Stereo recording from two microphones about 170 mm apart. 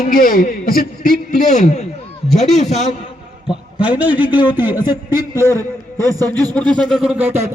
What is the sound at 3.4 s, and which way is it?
A man's voice, 5° right (ahead or behind).